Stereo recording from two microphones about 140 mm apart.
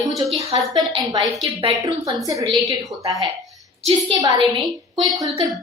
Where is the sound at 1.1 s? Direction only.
25° right (ahead or behind).